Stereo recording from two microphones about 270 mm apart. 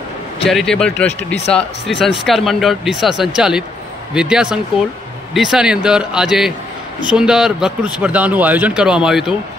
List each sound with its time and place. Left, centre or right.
0.5 s a man's voice: centre
1.0 s speech: left
1.5 s a man's voice: centre